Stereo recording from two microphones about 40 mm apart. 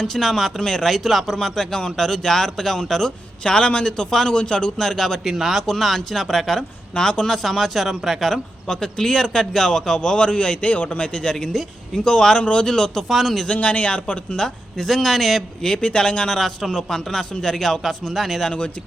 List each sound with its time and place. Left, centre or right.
0.0 s speech: centre; by 4.1 s left
4.1 s speech: centre
4.4 s speech: left
5.2 s speech: centre
5.6 s speech: centre
6.9 s speech: centre
7.4 s speech: centre
8.3 s speech: centre
13.1 s speech: centre
13.5 s speech: left
14.3 s speech: centre
15.6 s speech: left; by 18.3 s centre